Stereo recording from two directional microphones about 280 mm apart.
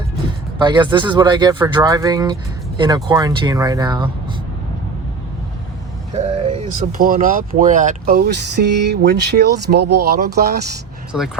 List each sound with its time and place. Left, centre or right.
0.6 s speech: centre
6.1 s speech: right
11.1 s speech: centre